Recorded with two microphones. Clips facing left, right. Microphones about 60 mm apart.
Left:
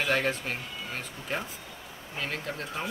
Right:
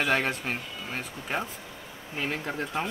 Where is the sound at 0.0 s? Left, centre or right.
Centre.